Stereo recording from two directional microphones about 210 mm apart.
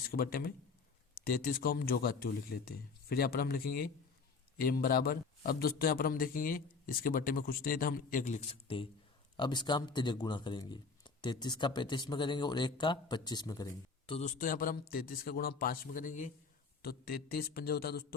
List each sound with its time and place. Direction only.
0.1 s a man's voice: 45° left (ahead or behind); by 14.2 s 20° left (ahead or behind)
14.2 s a man's voice: 35° left (ahead or behind)